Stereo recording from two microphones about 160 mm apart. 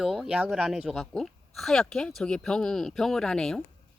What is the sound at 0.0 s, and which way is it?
Speech, 5° right (ahead or behind).